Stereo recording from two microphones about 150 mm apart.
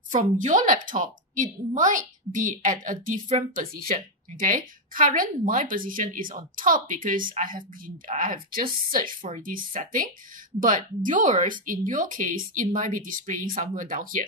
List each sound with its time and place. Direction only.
0.1 s a woman's voice: 55° right (ahead or behind)
3.5 s a woman's voice: 65° right (ahead or behind)